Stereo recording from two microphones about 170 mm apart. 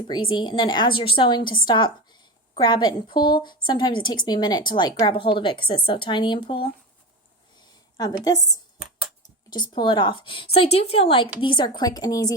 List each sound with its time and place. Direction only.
0.1 s a woman's voice: 30° left (ahead or behind)
8.0 s a woman's voice: 25° left (ahead or behind)
9.5 s a woman's voice: 25° left (ahead or behind)